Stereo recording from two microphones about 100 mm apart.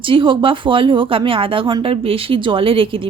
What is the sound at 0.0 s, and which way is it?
Speech, 60° right (ahead or behind).